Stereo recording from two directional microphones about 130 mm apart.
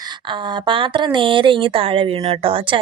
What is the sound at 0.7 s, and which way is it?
Speech, 40° right (ahead or behind).